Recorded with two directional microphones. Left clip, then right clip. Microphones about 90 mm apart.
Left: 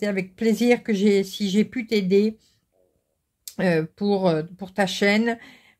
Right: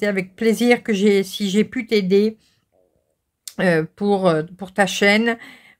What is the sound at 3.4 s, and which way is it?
Speech, 45° right (ahead or behind).